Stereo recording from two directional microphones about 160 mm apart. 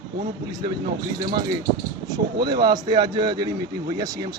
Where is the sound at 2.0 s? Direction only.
25° right (ahead or behind).